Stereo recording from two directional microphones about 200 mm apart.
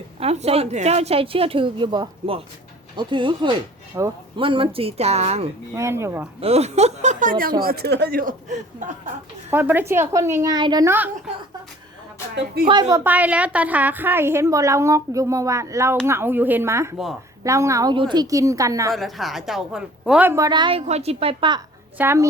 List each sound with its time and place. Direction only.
0.2 s speech: 30° right (ahead or behind)
3.9 s a woman's voice: 15° right (ahead or behind)
4.4 s speech: 25° right (ahead or behind)
5.7 s a woman's voice: 15° right (ahead or behind)
6.4 s speech: 30° right (ahead or behind)
9.5 s a woman's voice: 10° right (ahead or behind)
12.6 s speech: 20° right (ahead or behind)
13.1 s a woman's voice: 5° right (ahead or behind)
18.9 s a woman's voice: centre (ahead or behind); by 21.6 s 25° right (ahead or behind)
21.9 s a woman's voice: 10° right (ahead or behind)